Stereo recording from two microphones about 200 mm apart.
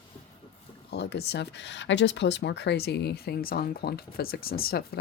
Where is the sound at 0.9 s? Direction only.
55° left (ahead or behind).